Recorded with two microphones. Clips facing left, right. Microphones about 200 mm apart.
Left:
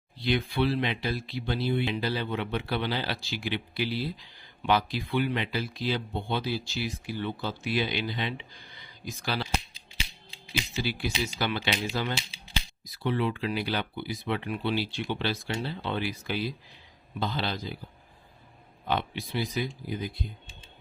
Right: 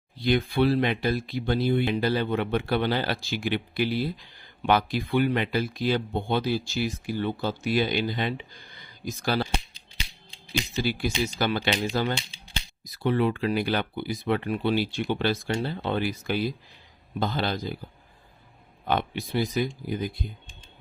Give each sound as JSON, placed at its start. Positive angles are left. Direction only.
{"t": 0.2, "sound": "speech", "side_deg": -45}
{"t": 10.8, "sound": "speech", "side_deg": -45}
{"t": 18.9, "sound": "speech", "side_deg": -50}